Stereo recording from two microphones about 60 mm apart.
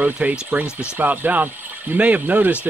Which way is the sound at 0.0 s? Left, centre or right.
Right.